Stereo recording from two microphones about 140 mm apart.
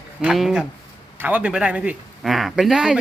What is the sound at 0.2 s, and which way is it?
A man's voice, 5° right (ahead or behind).